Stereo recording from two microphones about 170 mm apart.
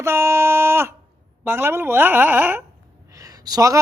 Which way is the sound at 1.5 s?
15° right (ahead or behind).